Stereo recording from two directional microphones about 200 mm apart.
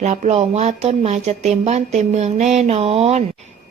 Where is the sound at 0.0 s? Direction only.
35° right (ahead or behind).